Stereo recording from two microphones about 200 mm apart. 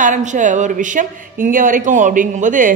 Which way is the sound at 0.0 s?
40° right (ahead or behind).